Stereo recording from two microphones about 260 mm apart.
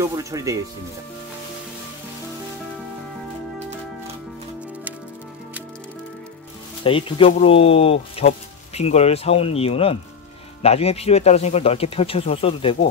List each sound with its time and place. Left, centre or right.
0.1 s speech: centre
6.8 s speech: left